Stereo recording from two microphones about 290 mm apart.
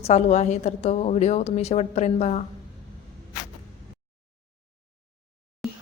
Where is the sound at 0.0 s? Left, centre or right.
Left.